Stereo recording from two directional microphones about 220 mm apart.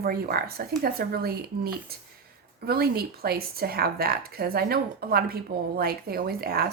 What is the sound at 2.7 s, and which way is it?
A woman's voice, 45° right (ahead or behind).